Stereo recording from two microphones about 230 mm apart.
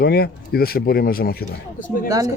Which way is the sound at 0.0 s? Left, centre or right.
Left.